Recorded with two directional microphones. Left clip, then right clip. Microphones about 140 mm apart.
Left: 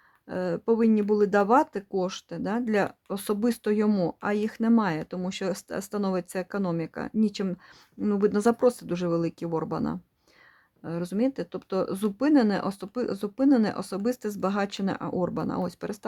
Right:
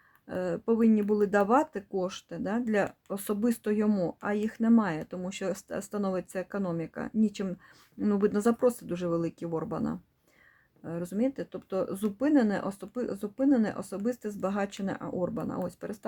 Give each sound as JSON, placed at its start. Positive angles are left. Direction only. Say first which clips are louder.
{"t": 0.3, "sound": "speech", "louder": "left 3 dB", "side_deg": 15}